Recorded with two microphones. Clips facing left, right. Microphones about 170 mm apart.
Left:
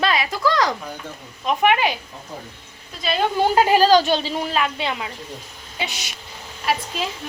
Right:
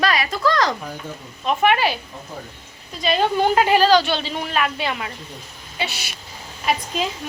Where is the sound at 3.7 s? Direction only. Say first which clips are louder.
Left 1 dB; 40° left (ahead or behind).